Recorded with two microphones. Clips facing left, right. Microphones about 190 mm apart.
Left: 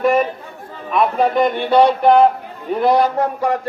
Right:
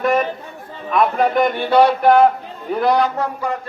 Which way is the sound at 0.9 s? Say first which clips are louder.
Even; centre (ahead or behind).